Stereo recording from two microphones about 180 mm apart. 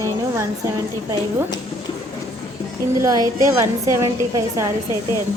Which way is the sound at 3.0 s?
20° right (ahead or behind).